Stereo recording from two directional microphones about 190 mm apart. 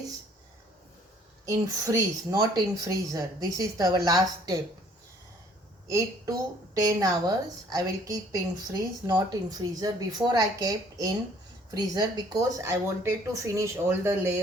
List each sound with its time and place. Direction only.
1.5 s a woman's voice: 20° right (ahead or behind)
6.7 s a woman's voice: 20° right (ahead or behind)